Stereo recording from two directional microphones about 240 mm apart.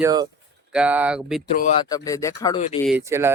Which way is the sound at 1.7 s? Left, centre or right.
Centre.